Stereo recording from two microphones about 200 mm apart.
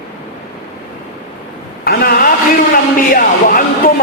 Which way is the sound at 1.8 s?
50° left (ahead or behind).